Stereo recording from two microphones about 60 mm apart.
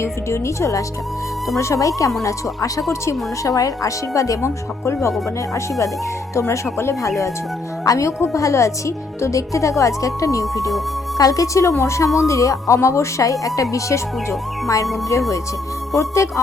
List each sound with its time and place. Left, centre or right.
0.0 s a woman's voice: left
2.9 s a woman's voice: left
3.5 s speech: left
4.4 s speech: left
6.5 s speech: left
7.9 s a woman's voice: left
11.2 s speech: left
11.8 s a woman's voice: left
16.0 s a woman's voice: left